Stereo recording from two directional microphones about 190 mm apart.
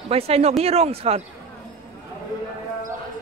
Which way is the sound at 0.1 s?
30° right (ahead or behind).